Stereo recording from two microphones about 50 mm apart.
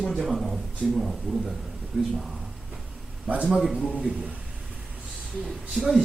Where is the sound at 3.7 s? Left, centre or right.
Right.